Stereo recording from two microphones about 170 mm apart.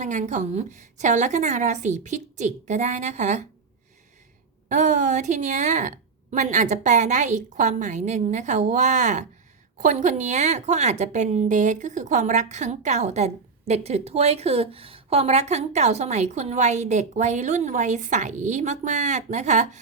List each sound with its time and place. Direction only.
0.0 s a woman's voice: 45° right (ahead or behind)
4.7 s a woman's voice: 45° right (ahead or behind)